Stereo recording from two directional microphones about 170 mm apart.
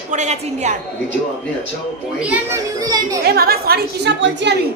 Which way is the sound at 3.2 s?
65° right (ahead or behind).